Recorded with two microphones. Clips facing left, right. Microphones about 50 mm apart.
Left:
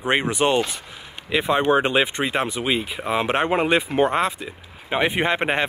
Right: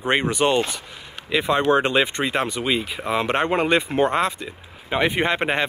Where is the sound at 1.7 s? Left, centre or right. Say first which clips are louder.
Even; centre.